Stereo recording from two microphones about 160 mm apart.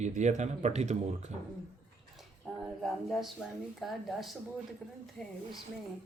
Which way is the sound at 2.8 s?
Centre (ahead or behind).